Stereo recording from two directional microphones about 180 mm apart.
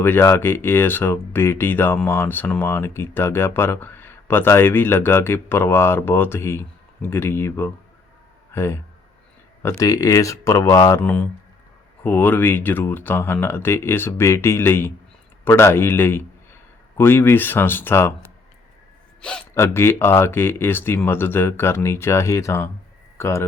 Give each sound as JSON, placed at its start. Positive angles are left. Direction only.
{"t": 0.0, "sound": "speech", "side_deg": 15}